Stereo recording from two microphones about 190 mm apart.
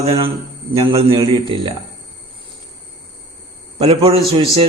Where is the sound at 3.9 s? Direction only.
30° right (ahead or behind).